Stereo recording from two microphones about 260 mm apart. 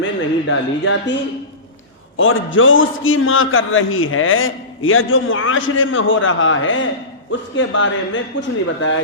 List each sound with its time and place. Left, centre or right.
0.0 s a man's voice: left
2.1 s a man's voice: left